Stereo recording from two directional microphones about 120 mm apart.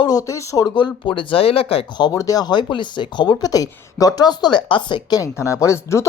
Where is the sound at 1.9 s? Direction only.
30° left (ahead or behind).